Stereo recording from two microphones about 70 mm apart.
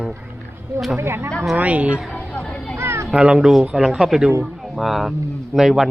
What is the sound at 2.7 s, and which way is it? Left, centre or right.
Children playing, right.